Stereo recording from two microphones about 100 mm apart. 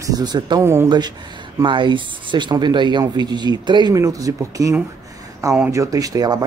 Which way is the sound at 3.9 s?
35° right (ahead or behind).